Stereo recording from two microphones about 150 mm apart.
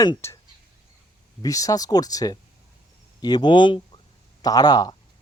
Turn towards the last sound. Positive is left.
turn(degrees=25)  # may be behind; listen again after turning